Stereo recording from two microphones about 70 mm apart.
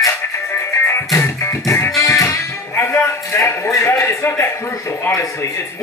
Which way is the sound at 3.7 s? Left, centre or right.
Left.